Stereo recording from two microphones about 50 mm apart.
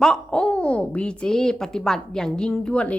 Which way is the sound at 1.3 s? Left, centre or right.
Centre.